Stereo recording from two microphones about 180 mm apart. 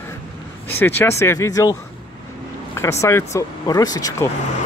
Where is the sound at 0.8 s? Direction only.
10° left (ahead or behind).